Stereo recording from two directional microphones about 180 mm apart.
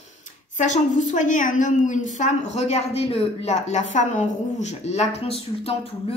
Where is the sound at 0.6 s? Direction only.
40° left (ahead or behind).